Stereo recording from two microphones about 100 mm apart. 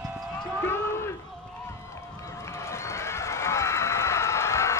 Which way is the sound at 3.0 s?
30° left (ahead or behind).